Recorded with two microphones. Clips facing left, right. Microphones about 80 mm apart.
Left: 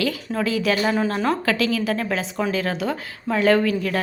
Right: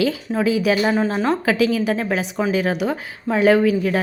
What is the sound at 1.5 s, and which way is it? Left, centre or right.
A woman's voice, centre.